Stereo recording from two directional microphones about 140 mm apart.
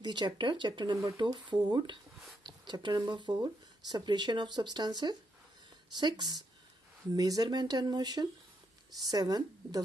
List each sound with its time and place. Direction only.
0.0 s speech: 30° right (ahead or behind)